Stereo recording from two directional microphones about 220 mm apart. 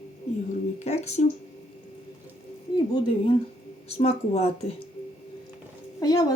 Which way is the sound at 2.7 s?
20° left (ahead or behind).